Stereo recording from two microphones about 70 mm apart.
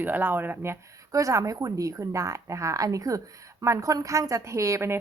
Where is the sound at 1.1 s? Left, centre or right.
Right.